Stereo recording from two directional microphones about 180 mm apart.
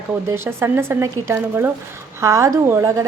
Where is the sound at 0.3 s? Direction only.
15° right (ahead or behind).